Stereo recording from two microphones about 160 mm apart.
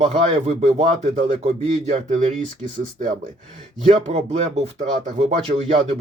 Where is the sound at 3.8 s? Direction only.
40° right (ahead or behind).